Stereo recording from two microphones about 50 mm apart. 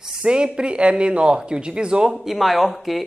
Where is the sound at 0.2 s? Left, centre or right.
Centre.